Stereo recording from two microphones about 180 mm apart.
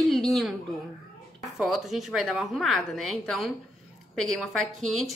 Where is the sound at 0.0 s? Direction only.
Centre (ahead or behind).